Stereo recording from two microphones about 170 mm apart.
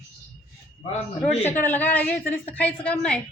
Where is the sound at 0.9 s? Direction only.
40° left (ahead or behind).